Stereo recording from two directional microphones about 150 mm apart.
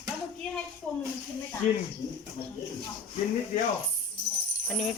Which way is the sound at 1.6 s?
60° left (ahead or behind).